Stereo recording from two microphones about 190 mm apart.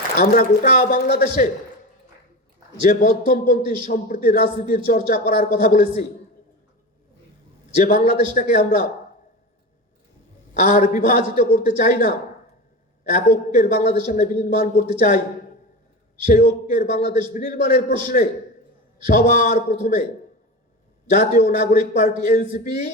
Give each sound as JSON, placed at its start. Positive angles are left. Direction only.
{"t": 0.2, "sound": "a man's voice", "side_deg": 50}
{"t": 2.8, "sound": "a man's voice", "side_deg": 50}
{"t": 7.9, "sound": "a man's voice", "side_deg": 45}
{"t": 10.5, "sound": "a man's voice", "side_deg": 40}
{"t": 13.1, "sound": "a man's voice", "side_deg": 45}
{"t": 16.2, "sound": "a man's voice", "side_deg": 45}
{"t": 21.1, "sound": "a man's voice", "side_deg": 45}